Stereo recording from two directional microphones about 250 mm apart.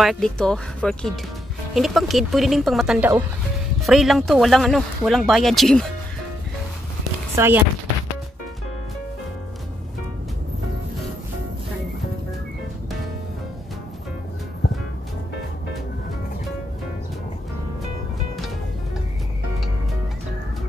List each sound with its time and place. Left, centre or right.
0.0 s speech: centre
7.3 s speech: centre